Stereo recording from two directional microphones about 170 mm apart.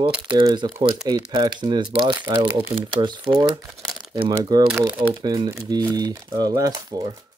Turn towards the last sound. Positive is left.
turn(degrees=-20)  # may be behind; listen again after turning